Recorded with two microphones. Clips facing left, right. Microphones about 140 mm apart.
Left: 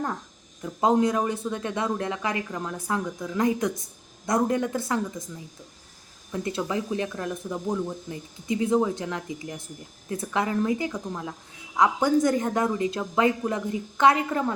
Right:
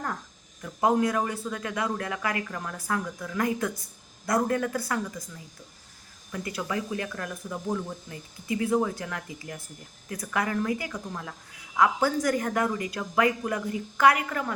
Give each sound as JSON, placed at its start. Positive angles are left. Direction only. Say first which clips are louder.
{"t": 0.6, "sound": "speech", "louder": "left 2 dB", "side_deg": 20}
{"t": 6.3, "sound": "speech", "louder": "left 3 dB", "side_deg": 25}